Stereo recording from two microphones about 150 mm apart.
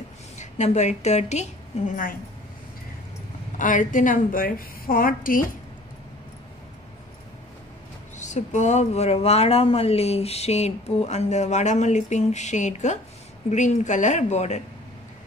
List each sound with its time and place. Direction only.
0.4 s a woman's voice: 50° left (ahead or behind)
3.5 s a woman's voice: 60° left (ahead or behind)
8.2 s speech: 50° left (ahead or behind)